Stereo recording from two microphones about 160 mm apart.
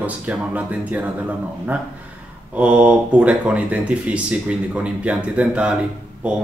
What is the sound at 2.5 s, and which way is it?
Speech, 10° right (ahead or behind).